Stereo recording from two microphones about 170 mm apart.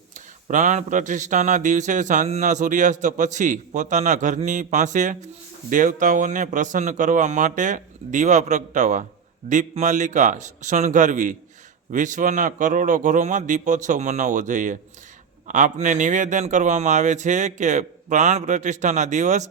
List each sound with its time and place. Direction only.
0.4 s speech: 45° right (ahead or behind)